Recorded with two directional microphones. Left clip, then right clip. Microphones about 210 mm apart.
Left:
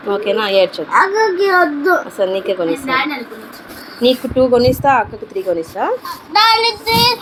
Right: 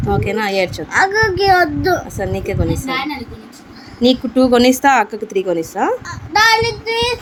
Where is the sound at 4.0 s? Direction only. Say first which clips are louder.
Left 1 dB; 55° right (ahead or behind).